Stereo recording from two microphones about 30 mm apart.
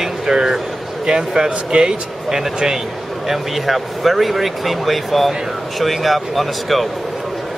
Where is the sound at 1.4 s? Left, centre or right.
Right.